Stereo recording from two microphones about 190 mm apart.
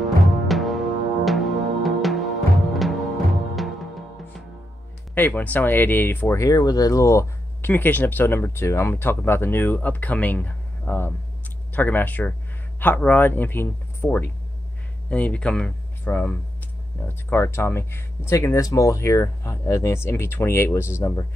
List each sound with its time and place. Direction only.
0.0 s music: centre (ahead or behind)
5.1 s speech: 10° left (ahead or behind)